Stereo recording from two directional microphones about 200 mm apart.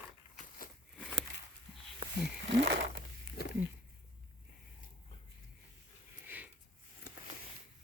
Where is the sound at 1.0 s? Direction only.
5° right (ahead or behind).